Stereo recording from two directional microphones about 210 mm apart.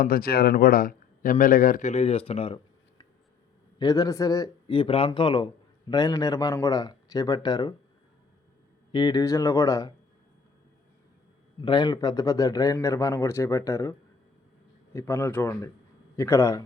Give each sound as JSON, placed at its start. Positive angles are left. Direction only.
{"t": 0.0, "sound": "a man's voice", "side_deg": 45}
{"t": 3.8, "sound": "speech", "side_deg": 15}
{"t": 8.9, "sound": "speech", "side_deg": 20}
{"t": 11.6, "sound": "speech", "side_deg": 20}
{"t": 14.9, "sound": "speech", "side_deg": 15}